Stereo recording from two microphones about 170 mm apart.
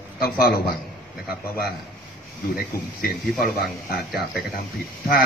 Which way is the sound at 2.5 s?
60° left (ahead or behind).